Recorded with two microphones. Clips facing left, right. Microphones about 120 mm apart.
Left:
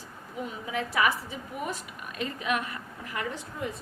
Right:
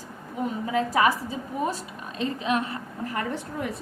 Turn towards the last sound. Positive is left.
turn(degrees=-60)  # may be behind; listen again after turning